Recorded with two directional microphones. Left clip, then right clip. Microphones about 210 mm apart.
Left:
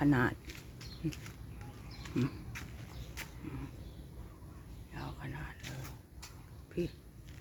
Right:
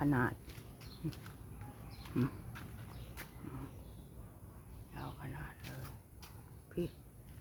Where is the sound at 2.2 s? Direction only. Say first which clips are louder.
Left 2 dB; 10° right (ahead or behind).